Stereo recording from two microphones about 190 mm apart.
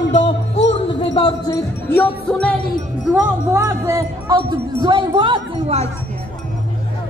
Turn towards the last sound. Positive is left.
turn(degrees=-30)  # may be behind; listen again after turning